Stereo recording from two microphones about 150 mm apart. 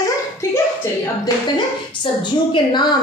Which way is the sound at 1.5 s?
30° left (ahead or behind).